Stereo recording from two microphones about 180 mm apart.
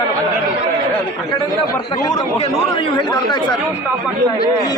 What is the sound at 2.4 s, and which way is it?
Speech, 30° left (ahead or behind).